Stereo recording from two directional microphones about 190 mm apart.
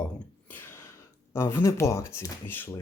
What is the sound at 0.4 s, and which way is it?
Speech, 10° left (ahead or behind).